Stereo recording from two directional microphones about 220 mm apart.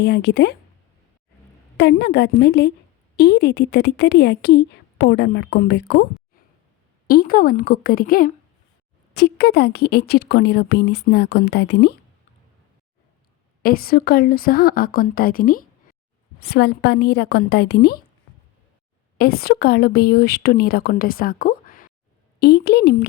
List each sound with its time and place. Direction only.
0.0 s speech: 50° left (ahead or behind)
1.8 s speech: 50° left (ahead or behind)
7.1 s speech: 40° left (ahead or behind)
13.6 s speech: 40° left (ahead or behind)
19.1 s speech: 45° left (ahead or behind)